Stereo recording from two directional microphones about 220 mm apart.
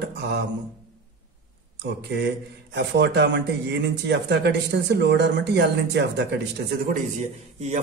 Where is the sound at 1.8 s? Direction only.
50° right (ahead or behind).